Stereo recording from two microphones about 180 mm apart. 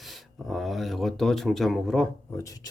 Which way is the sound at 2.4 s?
20° left (ahead or behind).